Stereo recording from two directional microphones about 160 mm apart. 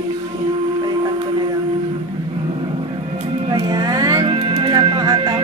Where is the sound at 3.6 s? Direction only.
25° right (ahead or behind).